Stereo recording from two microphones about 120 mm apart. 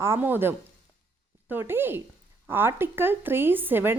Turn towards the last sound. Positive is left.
turn(degrees=-15)  # may be behind; listen again after turning